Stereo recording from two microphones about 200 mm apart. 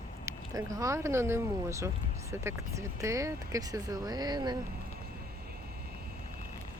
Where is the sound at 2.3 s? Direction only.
15° right (ahead or behind).